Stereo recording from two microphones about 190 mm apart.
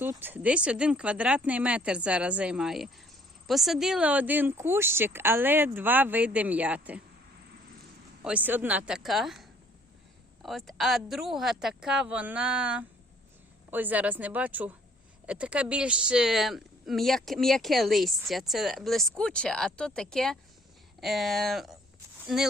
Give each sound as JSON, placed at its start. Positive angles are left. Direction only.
{"t": 0.0, "sound": "speech", "side_deg": -10}
{"t": 8.2, "sound": "speech", "side_deg": -10}